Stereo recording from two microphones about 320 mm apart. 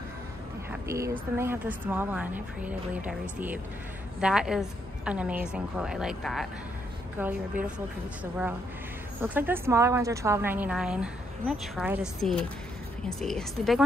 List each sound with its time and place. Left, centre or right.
0.8 s a woman's voice: centre